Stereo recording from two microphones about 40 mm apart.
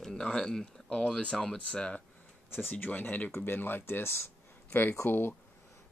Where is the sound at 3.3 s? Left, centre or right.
Left.